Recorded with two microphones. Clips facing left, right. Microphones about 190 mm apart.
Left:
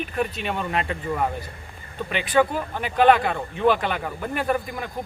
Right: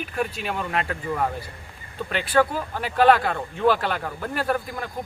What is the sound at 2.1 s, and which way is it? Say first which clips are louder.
Speech: left 1 dB; 15° left (ahead or behind).